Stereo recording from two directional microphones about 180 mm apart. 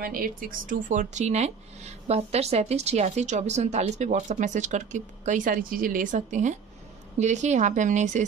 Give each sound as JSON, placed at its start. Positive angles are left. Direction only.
{"t": 0.0, "sound": "speech", "side_deg": -55}